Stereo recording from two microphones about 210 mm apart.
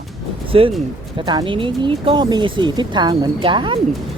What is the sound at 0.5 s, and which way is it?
Speech, 25° right (ahead or behind).